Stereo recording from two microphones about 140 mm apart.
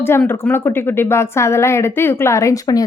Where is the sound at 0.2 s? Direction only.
15° left (ahead or behind).